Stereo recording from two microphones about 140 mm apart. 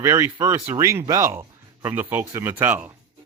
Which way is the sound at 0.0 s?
25° right (ahead or behind).